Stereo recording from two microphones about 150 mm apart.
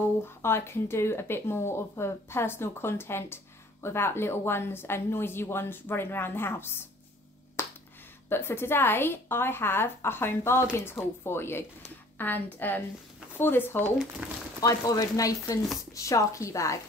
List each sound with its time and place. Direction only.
0.2 s a woman's voice: 15° left (ahead or behind)
8.3 s a woman's voice: 15° left (ahead or behind)